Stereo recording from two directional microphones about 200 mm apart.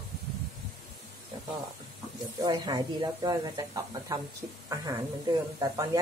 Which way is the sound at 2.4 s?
20° right (ahead or behind).